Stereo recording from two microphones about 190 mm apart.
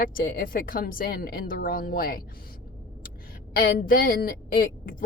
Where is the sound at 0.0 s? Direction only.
50° left (ahead or behind).